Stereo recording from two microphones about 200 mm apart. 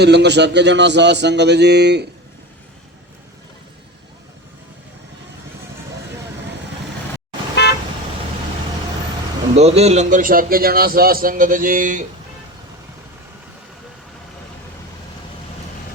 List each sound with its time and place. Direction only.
0.0 s a man's voice: 55° right (ahead or behind)
7.6 s car: 55° left (ahead or behind)
9.6 s a man's voice: 30° right (ahead or behind)